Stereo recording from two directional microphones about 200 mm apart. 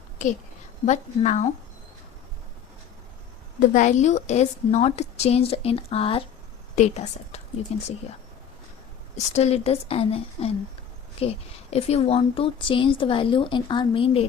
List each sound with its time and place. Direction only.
0.2 s a woman's voice: 40° left (ahead or behind)
3.7 s a woman's voice: 35° left (ahead or behind)
9.1 s speech: 35° left (ahead or behind)